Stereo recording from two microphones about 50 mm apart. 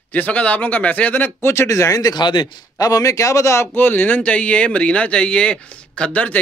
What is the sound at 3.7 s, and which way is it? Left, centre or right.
Speech, left.